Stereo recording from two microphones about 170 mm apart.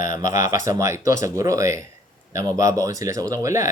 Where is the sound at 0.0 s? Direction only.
20° right (ahead or behind).